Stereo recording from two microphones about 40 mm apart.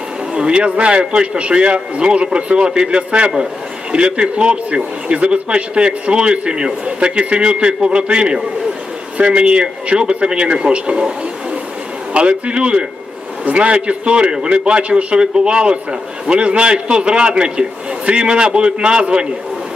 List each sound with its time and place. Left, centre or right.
0.3 s a man's voice: right
12.1 s a man's voice: right